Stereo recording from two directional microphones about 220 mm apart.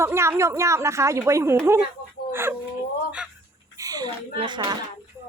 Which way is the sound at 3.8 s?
15° right (ahead or behind).